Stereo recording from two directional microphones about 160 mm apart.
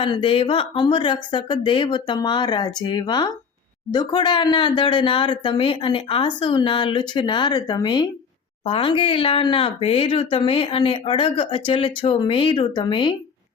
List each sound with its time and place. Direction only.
0.0 s speech: 30° left (ahead or behind)